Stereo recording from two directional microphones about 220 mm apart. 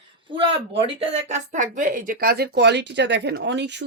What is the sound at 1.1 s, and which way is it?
Speech, 35° right (ahead or behind).